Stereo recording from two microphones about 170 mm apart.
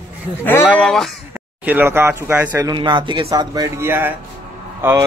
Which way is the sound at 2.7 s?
30° right (ahead or behind).